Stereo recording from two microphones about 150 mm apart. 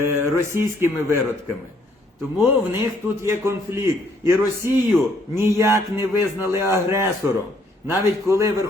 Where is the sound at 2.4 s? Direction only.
15° right (ahead or behind).